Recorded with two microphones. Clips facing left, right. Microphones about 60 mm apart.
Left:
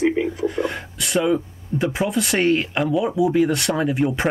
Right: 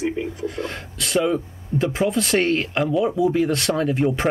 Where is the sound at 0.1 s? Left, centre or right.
Left.